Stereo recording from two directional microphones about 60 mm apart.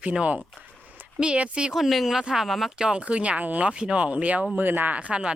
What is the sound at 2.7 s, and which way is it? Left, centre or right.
Speech, centre.